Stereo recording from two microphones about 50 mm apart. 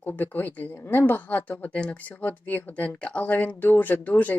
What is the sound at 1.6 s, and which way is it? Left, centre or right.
Speech, left.